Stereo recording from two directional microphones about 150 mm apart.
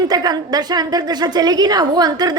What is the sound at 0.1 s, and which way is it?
A woman's voice, 25° right (ahead or behind).